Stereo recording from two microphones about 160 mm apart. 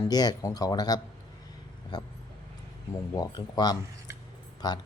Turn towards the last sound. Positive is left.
turn(degrees=25)  # may be behind; listen again after turning